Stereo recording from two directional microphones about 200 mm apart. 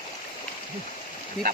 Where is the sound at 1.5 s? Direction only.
50° right (ahead or behind).